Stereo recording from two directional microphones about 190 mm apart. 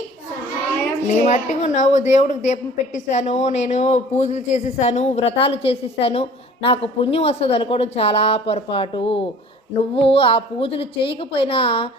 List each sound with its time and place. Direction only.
1.0 s a woman's voice: 40° left (ahead or behind)